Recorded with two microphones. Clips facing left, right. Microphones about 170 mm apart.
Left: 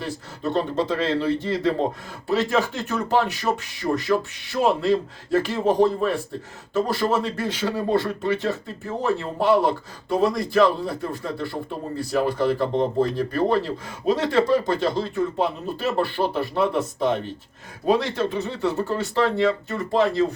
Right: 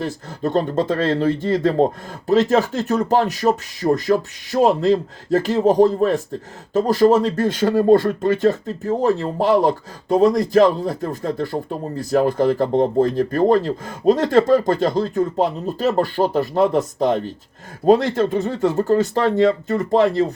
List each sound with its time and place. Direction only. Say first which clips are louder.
0.0 s speech: right 5 dB; 45° right (ahead or behind)